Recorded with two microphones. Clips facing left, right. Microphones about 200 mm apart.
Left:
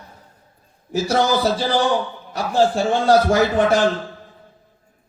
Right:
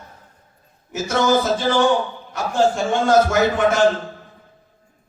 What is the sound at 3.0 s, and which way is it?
Speech, 35° left (ahead or behind).